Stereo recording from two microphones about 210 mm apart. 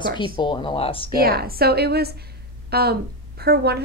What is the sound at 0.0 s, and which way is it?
Speech, 20° left (ahead or behind).